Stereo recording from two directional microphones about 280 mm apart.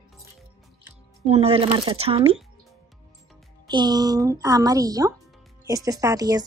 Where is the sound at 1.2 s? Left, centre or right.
Right.